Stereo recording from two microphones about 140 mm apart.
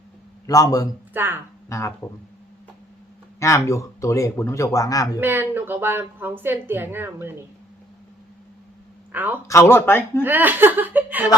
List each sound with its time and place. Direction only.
0.4 s speech: 25° left (ahead or behind)
1.1 s speech: 15° right (ahead or behind)
1.7 s speech: 20° left (ahead or behind)
3.4 s speech: 20° left (ahead or behind)
5.2 s a woman's voice: 15° right (ahead or behind)
9.1 s a woman's voice: 15° right (ahead or behind)
9.5 s speech: 20° left (ahead or behind)
10.2 s a woman's voice: 15° right (ahead or behind)